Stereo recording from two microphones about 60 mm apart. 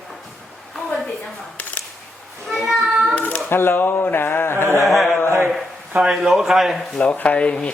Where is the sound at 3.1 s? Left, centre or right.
Left.